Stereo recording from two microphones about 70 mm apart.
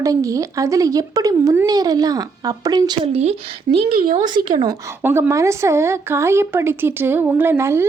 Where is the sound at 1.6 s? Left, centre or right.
Right.